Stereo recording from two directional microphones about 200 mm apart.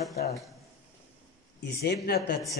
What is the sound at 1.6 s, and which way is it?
Speech, 55° left (ahead or behind).